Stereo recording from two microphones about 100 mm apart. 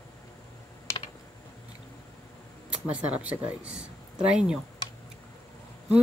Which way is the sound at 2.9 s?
15° right (ahead or behind).